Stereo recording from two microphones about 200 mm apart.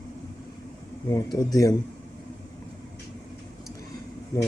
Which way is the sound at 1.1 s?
20° left (ahead or behind).